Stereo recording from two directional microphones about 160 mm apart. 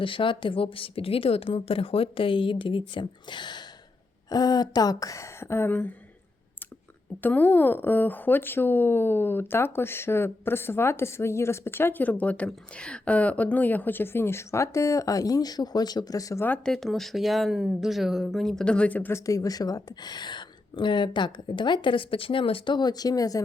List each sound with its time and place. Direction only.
0.0 s a woman's voice: 30° left (ahead or behind); by 5.9 s 15° left (ahead or behind)
7.2 s speech: 10° left (ahead or behind)
16.6 s speech: centre (ahead or behind); by 23.4 s 20° left (ahead or behind)